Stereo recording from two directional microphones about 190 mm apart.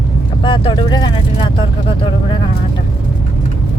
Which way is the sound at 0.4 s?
25° left (ahead or behind).